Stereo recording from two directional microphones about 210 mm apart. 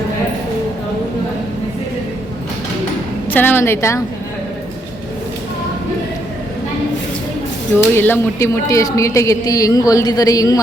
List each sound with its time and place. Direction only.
3.3 s a woman's voice: 10° left (ahead or behind)
7.9 s a woman's voice: 10° left (ahead or behind)